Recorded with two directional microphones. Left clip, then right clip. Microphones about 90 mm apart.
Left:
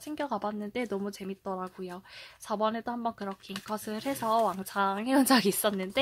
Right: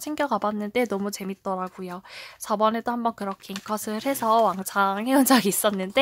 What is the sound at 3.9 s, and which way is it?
Speech, 35° right (ahead or behind).